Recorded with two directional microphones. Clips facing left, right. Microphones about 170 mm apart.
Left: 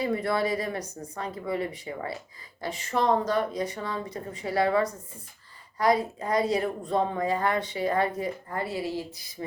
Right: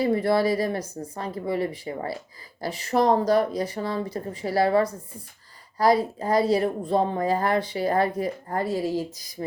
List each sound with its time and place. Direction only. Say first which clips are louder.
0.0 s speech: right 5 dB; 35° right (ahead or behind)